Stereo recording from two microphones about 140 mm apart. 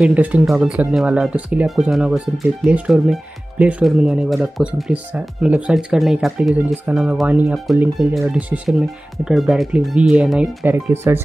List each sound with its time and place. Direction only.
0.0 s speech: 10° right (ahead or behind)